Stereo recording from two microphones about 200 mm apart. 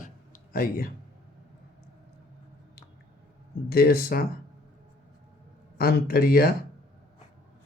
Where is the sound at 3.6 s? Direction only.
50° left (ahead or behind).